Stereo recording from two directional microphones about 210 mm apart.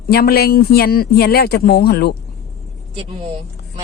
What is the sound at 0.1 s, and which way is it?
Speech, 45° left (ahead or behind).